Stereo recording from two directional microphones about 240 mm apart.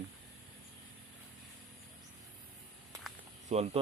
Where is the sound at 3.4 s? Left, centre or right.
Right.